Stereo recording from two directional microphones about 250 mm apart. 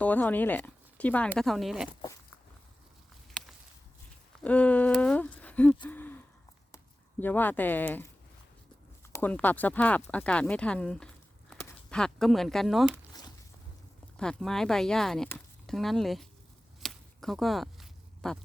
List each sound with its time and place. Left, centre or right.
0.0 s speech: centre
4.4 s speech: centre
5.9 s a sound: centre
7.2 s speech: centre
9.1 s speech: centre
14.2 s speech: centre
16.8 s a sound: centre